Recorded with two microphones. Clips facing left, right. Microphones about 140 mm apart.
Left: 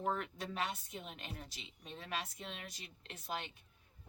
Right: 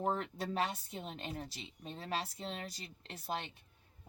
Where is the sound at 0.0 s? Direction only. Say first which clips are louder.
Right 3 dB; 35° right (ahead or behind).